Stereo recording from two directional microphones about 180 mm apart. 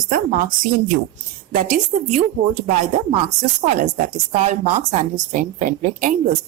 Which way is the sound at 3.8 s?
45° right (ahead or behind).